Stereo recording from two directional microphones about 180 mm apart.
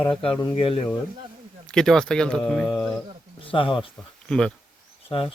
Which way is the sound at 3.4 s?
30° left (ahead or behind).